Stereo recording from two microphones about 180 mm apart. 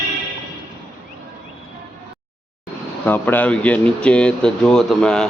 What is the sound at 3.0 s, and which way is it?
Speech, 10° left (ahead or behind).